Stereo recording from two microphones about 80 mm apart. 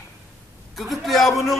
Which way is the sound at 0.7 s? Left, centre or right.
Centre.